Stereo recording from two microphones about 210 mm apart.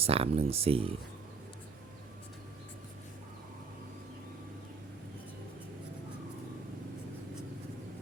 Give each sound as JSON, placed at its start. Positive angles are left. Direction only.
{"t": 0.0, "sound": "speech", "side_deg": -30}